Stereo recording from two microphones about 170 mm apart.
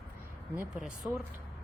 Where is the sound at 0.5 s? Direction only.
5° right (ahead or behind).